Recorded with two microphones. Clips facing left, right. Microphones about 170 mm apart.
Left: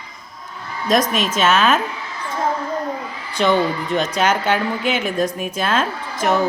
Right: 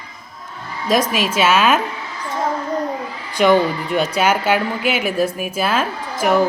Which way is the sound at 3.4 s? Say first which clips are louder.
Right 3 dB; 10° right (ahead or behind).